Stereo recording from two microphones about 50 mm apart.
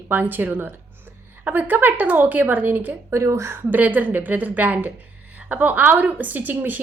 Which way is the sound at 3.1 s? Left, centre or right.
Right.